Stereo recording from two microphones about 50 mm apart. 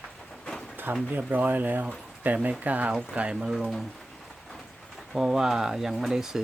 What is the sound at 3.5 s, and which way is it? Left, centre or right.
Speech, centre.